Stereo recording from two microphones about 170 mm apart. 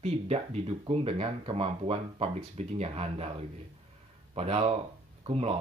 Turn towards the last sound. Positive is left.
turn(degrees=-35)  # may be behind; listen again after turning